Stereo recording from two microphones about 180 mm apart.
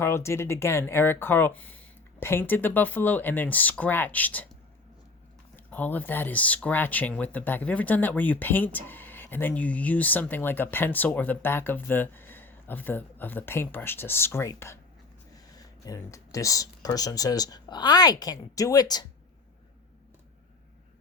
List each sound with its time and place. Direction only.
0.0 s speech: 15° left (ahead or behind)
5.5 s speech: 10° left (ahead or behind)